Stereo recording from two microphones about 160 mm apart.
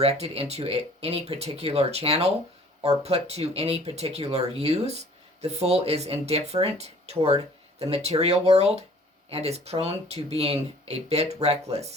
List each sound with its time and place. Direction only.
0.0 s speech: 40° right (ahead or behind)